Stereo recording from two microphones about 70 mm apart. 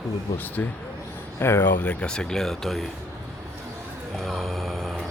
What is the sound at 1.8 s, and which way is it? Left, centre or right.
Speech, centre.